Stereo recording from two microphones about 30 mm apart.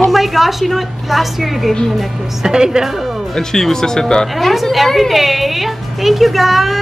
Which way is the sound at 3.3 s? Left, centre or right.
Centre.